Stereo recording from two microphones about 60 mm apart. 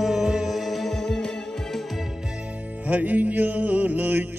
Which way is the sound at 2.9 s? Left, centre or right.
Right.